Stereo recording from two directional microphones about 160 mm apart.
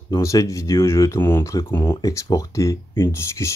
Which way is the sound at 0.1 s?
20° left (ahead or behind).